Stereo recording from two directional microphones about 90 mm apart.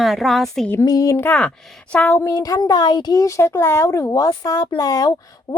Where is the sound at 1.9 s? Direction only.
20° left (ahead or behind).